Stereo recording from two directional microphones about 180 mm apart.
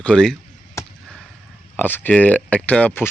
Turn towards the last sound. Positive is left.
turn(degrees=10)  # may be behind; listen again after turning